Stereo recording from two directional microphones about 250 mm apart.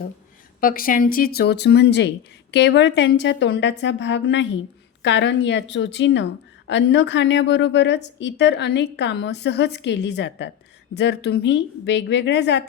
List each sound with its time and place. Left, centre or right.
0.6 s speech: left